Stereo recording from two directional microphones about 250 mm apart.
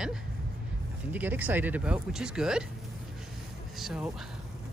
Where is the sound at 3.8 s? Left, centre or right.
Centre.